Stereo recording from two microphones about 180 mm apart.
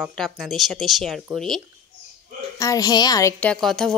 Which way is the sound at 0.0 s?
Centre (ahead or behind).